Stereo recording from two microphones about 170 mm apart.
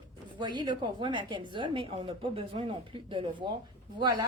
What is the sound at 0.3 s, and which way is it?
A woman's voice, 25° right (ahead or behind).